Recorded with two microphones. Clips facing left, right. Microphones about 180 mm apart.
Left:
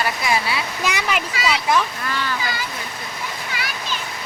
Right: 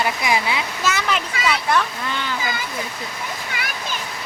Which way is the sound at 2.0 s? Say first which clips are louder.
Left 1 dB; 20° right (ahead or behind).